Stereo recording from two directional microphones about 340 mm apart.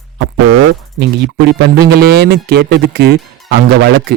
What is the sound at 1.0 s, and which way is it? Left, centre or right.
Speech, right.